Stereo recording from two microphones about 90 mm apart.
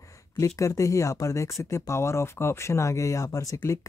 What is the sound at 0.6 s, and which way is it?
Speech, 35° left (ahead or behind).